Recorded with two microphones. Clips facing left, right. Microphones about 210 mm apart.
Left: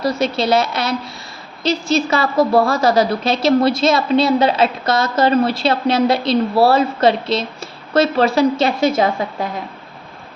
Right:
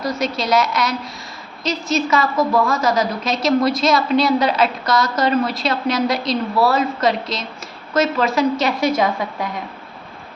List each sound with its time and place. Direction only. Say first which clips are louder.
0.0 s a woman's voice: left 4 dB; 30° left (ahead or behind)